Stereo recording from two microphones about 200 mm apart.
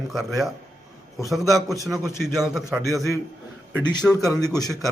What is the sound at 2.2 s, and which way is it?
Speech, centre (ahead or behind).